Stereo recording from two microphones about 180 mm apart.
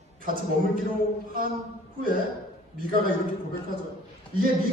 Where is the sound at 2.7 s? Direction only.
50° right (ahead or behind).